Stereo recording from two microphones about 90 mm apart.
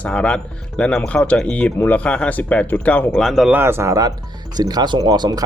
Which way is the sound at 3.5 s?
25° right (ahead or behind).